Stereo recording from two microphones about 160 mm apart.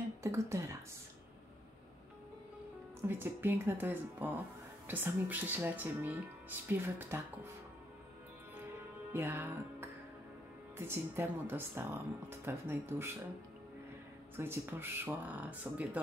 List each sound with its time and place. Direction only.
0.2 s speech: 15° right (ahead or behind)
3.1 s speech: 15° right (ahead or behind)
9.1 s music: 15° right (ahead or behind)
10.9 s speech: 15° right (ahead or behind)
14.3 s speech: 15° right (ahead or behind)